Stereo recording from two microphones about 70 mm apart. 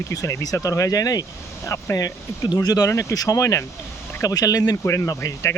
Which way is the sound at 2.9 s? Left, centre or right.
Left.